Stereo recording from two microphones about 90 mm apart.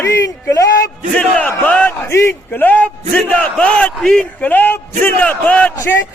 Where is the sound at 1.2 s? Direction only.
15° left (ahead or behind).